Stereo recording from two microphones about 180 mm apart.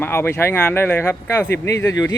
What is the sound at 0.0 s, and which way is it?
Speech, 10° left (ahead or behind).